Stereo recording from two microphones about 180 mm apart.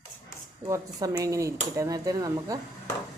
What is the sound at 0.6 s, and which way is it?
Speech, 20° right (ahead or behind).